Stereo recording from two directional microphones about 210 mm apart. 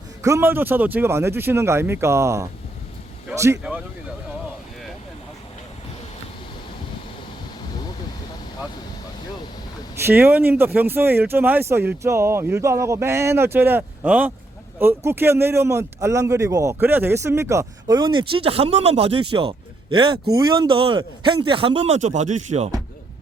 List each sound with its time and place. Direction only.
0.2 s speech: 15° right (ahead or behind)
10.0 s a man's voice: 10° right (ahead or behind); by 22.7 s 35° right (ahead or behind)